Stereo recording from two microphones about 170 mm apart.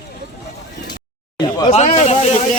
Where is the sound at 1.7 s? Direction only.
40° left (ahead or behind).